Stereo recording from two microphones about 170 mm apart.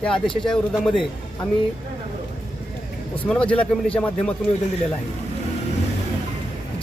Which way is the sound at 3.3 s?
5° left (ahead or behind).